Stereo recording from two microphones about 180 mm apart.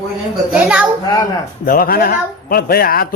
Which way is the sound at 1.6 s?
55° left (ahead or behind).